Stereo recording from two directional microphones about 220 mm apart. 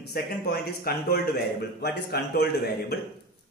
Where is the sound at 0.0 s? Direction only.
45° left (ahead or behind).